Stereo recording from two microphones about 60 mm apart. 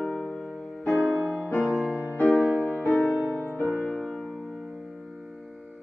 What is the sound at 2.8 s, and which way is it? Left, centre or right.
Music, left.